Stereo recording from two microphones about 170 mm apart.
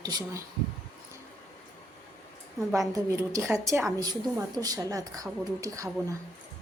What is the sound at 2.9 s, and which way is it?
A woman's voice, 20° right (ahead or behind).